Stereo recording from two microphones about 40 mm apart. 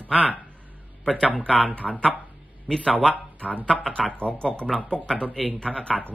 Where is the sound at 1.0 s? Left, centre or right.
Left.